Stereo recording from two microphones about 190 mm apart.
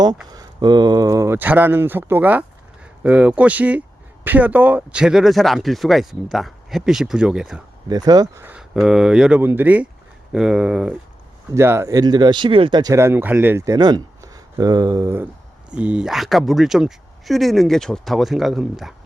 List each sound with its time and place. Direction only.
0.3 s speech: 20° right (ahead or behind); by 7.6 s 5° right (ahead or behind)
7.9 s speech: 20° right (ahead or behind); by 18.9 s centre (ahead or behind)